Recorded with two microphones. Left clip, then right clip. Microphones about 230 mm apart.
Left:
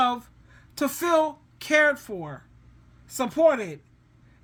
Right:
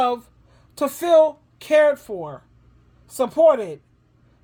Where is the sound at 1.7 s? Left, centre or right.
Centre.